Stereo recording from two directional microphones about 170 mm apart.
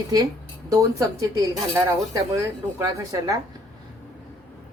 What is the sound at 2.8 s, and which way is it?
Speech, 20° right (ahead or behind).